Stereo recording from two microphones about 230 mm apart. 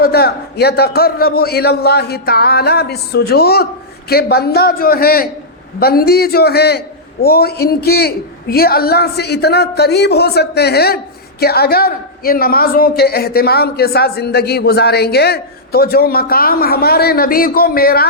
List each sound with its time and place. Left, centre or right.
0.0 s a man's voice: left